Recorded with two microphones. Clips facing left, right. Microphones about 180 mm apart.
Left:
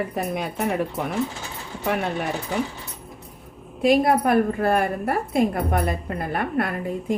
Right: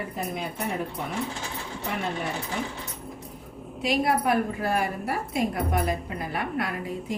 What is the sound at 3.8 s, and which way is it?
A woman's voice, 50° left (ahead or behind).